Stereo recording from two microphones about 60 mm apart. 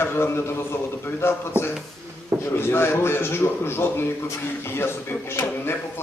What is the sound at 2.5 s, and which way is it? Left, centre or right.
A man's voice, left.